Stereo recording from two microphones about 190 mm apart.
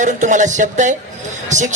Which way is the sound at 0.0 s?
40° right (ahead or behind).